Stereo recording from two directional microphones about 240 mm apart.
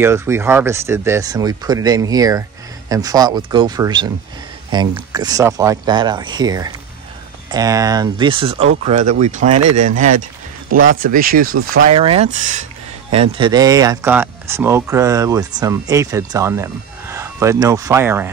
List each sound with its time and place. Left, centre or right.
0.0 s speech: centre; by 11.5 s right
11.8 s speech: right; by 18.3 s centre